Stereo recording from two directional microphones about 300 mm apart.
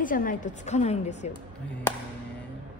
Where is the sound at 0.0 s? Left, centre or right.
Left.